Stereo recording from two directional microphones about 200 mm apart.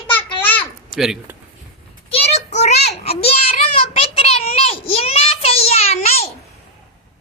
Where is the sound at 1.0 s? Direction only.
5° right (ahead or behind).